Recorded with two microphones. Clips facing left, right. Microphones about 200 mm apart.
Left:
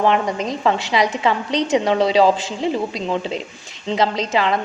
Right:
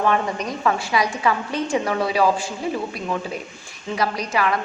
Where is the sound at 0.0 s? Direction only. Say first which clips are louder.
Left 3 dB; 25° left (ahead or behind).